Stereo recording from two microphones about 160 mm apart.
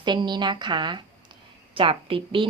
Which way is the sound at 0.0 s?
30° right (ahead or behind).